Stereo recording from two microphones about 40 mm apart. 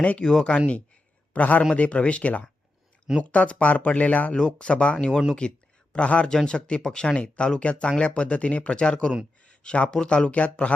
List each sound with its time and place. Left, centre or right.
0.0 s speech: left
0.3 s speech: centre
1.3 s speech: left
6.3 s speech: centre